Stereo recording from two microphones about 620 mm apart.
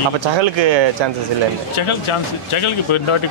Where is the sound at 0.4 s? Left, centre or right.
Right.